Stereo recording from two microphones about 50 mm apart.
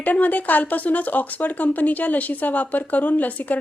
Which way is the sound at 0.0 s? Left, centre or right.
Left.